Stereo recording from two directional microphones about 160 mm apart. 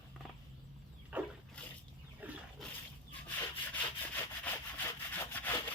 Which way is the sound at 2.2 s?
10° right (ahead or behind).